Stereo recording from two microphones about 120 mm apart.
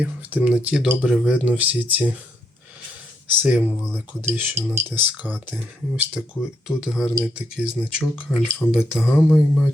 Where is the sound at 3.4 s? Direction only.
10° right (ahead or behind).